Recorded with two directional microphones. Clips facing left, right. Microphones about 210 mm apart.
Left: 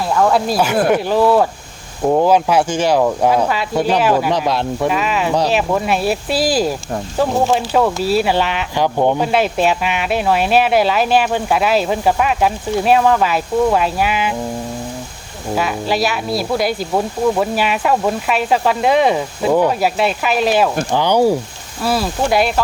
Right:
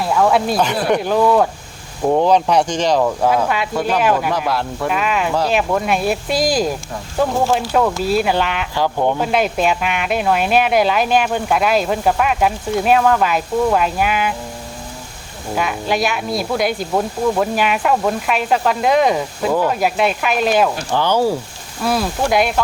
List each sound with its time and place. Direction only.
0.0 s speech: 5° right (ahead or behind)
4.4 s speech: 20° left (ahead or behind)
4.9 s speech: centre (ahead or behind)
7.3 s speech: 20° left (ahead or behind)
7.5 s speech: 5° left (ahead or behind)
8.7 s speech: 15° left (ahead or behind)
9.2 s speech: centre (ahead or behind)
15.5 s speech: centre (ahead or behind)
20.9 s speech: 15° left (ahead or behind)
21.8 s speech: 5° left (ahead or behind)